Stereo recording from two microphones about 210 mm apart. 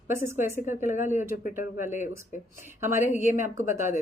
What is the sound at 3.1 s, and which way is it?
Speech, 35° left (ahead or behind).